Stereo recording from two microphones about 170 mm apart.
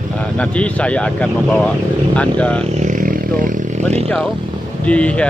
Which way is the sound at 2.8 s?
50° right (ahead or behind).